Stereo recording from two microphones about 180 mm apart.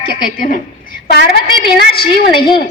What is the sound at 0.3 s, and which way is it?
Speech, 50° left (ahead or behind).